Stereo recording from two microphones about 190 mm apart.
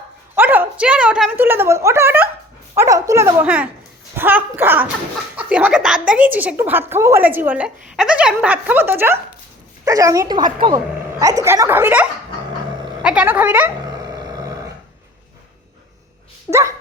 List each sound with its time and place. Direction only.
0.3 s a woman's voice: 10° right (ahead or behind)
16.5 s a woman's voice: 15° right (ahead or behind)